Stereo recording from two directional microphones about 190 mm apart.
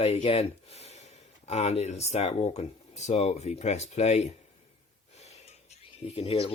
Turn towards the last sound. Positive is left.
turn(degrees=30)  # may be behind; listen again after turning